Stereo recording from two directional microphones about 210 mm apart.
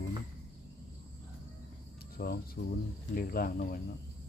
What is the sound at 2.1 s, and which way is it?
Speech, 45° left (ahead or behind).